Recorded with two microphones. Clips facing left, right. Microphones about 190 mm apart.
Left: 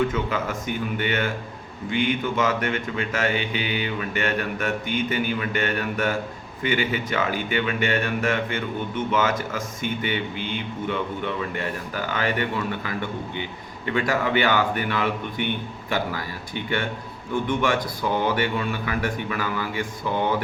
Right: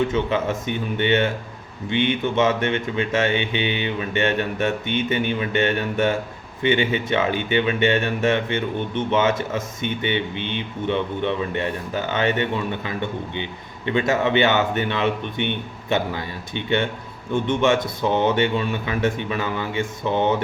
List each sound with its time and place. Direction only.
0.1 s speech: 25° right (ahead or behind)